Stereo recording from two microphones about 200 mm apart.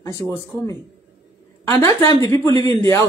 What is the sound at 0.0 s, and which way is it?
Speech, 15° left (ahead or behind).